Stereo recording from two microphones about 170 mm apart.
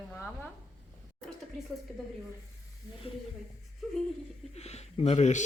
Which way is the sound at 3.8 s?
5° right (ahead or behind).